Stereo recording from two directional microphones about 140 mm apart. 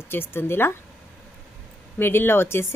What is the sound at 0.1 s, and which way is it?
Speech, 15° left (ahead or behind).